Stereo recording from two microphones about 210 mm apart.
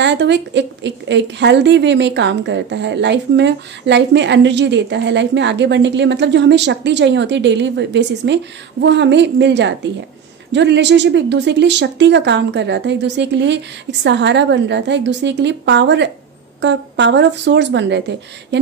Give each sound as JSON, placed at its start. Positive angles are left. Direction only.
{"t": 0.0, "sound": "a woman's voice", "side_deg": -55}